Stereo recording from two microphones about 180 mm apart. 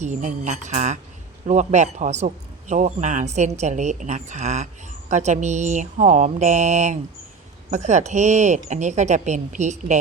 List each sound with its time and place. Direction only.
0.0 s a man's voice: 45° right (ahead or behind)